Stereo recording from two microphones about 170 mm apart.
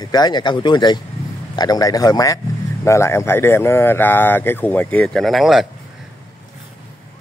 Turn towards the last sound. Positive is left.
turn(degrees=0)  # may be behind; listen again after turning